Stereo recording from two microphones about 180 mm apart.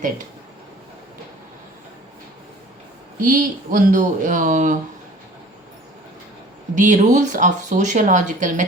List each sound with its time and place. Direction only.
3.2 s speech: 50° right (ahead or behind)
6.7 s speech: 45° right (ahead or behind)